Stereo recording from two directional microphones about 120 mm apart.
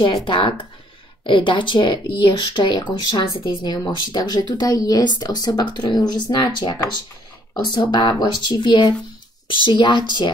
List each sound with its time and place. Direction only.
0.0 s a woman's voice: 40° left (ahead or behind)